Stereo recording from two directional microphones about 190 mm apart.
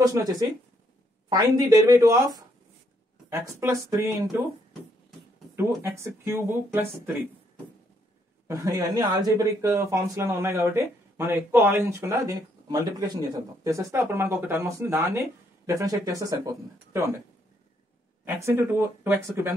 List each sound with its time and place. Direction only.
0.0 s speech: 20° right (ahead or behind)
5.6 s speech: 15° right (ahead or behind)
8.5 s speech: 20° right (ahead or behind)
18.2 s speech: 10° right (ahead or behind)